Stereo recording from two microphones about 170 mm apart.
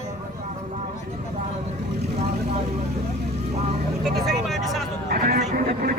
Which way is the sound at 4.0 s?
Centre (ahead or behind).